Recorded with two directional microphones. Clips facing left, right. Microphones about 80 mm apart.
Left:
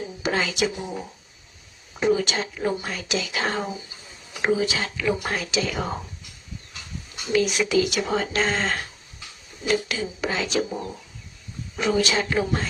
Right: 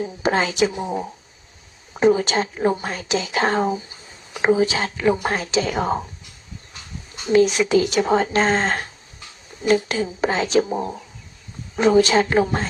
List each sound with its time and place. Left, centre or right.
0.0 s speech: right
7.3 s speech: right
9.9 s speech: right
11.8 s speech: right